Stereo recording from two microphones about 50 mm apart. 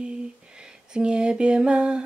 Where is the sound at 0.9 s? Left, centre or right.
Centre.